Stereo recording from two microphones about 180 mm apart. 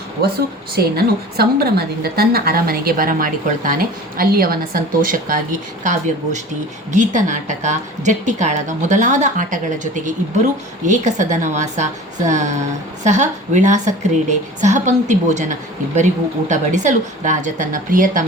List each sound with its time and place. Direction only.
0.2 s a woman's voice: 60° right (ahead or behind)